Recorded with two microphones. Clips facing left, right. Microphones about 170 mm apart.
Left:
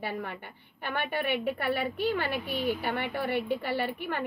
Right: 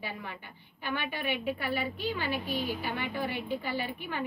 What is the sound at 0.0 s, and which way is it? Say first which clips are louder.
A woman's voice: left 5 dB; 55° left (ahead or behind).